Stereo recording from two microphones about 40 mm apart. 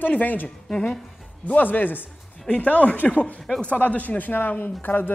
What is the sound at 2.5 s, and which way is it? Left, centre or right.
Speech, left.